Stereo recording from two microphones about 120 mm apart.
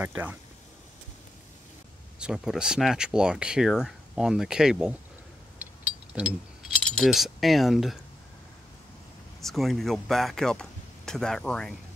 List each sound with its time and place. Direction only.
0.0 s speech: 15° right (ahead or behind)
2.1 s speech: 5° right (ahead or behind)
5.6 s mechanisms: 10° right (ahead or behind)
6.8 s speech: 5° left (ahead or behind)
9.4 s speech: centre (ahead or behind)